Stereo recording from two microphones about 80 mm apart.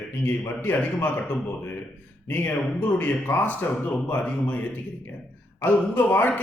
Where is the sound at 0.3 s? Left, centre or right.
Left.